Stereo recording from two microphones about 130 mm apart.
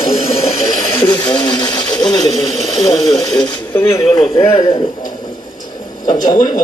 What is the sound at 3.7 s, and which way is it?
Speech, 20° left (ahead or behind).